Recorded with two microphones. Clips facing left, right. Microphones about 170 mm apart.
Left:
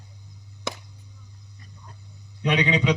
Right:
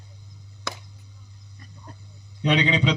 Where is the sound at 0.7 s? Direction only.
20° left (ahead or behind).